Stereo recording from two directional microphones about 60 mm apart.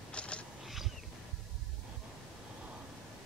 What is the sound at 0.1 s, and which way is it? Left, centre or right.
Wild animals, centre.